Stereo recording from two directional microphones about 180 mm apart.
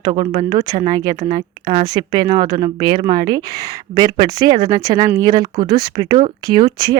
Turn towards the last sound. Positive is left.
turn(degrees=-25)  # may be behind; listen again after turning